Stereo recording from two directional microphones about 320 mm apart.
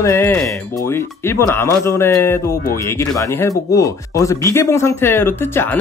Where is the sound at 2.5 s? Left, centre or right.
Left.